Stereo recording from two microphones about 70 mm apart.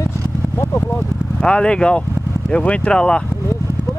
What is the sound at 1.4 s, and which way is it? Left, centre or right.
Speech, centre.